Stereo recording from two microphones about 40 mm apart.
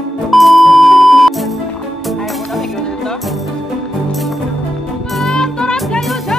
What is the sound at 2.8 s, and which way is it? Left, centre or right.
Music, centre.